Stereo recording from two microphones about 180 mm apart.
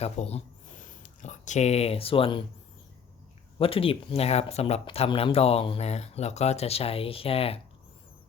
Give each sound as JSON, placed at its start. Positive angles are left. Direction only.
{"t": 0.0, "sound": "speech", "side_deg": 35}
{"t": 3.6, "sound": "speech", "side_deg": 30}